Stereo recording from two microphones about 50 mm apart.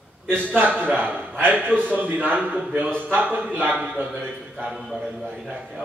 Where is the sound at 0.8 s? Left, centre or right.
Right.